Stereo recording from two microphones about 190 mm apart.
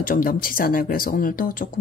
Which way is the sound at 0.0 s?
45° left (ahead or behind).